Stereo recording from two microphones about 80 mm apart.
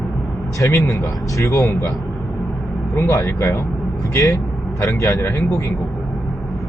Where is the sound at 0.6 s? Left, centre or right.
Left.